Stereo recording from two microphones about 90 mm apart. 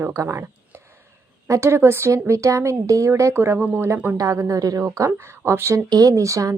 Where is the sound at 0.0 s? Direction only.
30° right (ahead or behind).